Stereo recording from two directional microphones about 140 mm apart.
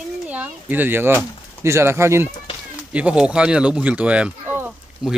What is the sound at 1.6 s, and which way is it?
Speech, 20° right (ahead or behind).